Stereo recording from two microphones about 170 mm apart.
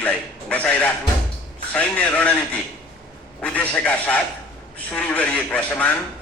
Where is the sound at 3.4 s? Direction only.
10° left (ahead or behind).